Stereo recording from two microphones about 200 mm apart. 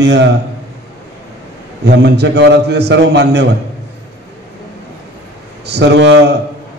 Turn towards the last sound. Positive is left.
turn(degrees=-60)  # may be behind; listen again after turning